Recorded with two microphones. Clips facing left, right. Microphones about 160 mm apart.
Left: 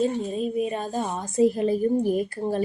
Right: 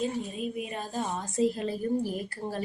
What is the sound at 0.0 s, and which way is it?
Speech, 40° left (ahead or behind).